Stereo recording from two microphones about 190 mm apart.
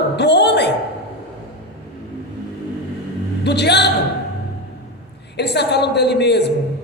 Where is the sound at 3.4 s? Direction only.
60° left (ahead or behind).